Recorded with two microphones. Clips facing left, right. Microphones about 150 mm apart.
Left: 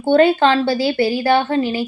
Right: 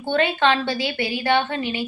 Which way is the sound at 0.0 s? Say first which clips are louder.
Left 7 dB; 35° left (ahead or behind).